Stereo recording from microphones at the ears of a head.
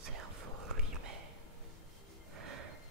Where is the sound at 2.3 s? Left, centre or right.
Right.